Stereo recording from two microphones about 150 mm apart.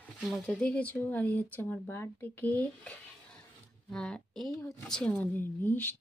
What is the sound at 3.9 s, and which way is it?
A woman's voice, 5° left (ahead or behind).